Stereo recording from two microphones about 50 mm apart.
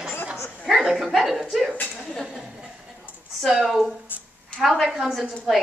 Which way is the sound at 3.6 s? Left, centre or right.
Centre.